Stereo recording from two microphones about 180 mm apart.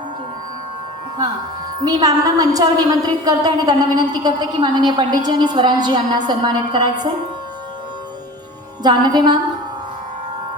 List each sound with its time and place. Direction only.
1.8 s a woman's voice: 20° right (ahead or behind)
8.8 s a woman's voice: 25° right (ahead or behind)